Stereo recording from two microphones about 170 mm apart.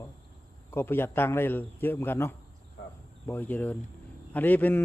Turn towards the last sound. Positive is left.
turn(degrees=10)  # may be behind; listen again after turning